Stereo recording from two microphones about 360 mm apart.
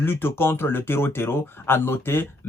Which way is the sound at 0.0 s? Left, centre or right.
Centre.